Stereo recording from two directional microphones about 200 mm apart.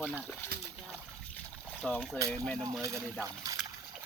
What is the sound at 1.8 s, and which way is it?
Speech, 5° left (ahead or behind).